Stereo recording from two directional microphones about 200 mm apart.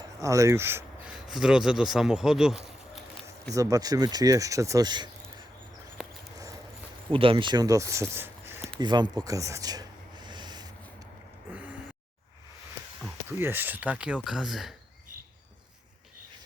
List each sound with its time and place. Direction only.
0.2 s speech: 15° right (ahead or behind)
3.5 s speech: 15° right (ahead or behind)
6.0 s a sound: centre (ahead or behind)
7.1 s speech: 25° right (ahead or behind)
10.2 s a sound: 20° right (ahead or behind)
13.4 s speech: 10° right (ahead or behind)